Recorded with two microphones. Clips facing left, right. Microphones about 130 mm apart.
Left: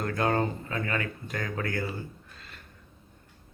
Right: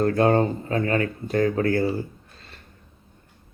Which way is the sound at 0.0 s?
35° right (ahead or behind).